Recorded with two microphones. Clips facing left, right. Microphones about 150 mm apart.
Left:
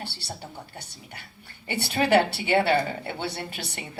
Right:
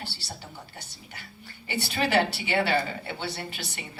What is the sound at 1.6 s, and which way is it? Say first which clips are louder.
A man's voice: left 3 dB; 60° left (ahead or behind).